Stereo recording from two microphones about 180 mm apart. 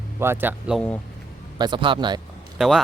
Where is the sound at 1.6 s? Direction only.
25° right (ahead or behind).